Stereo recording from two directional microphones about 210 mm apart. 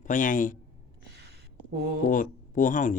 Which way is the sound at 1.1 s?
50° right (ahead or behind).